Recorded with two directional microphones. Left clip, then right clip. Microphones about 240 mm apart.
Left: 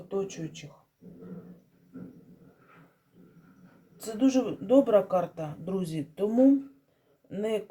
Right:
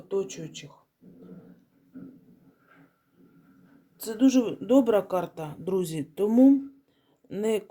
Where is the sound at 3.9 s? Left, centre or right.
Right.